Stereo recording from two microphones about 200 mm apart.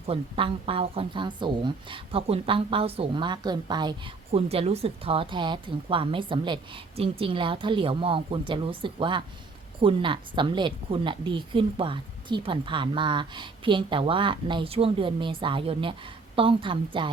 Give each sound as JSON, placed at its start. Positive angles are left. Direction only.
{"t": 0.0, "sound": "speech", "side_deg": -30}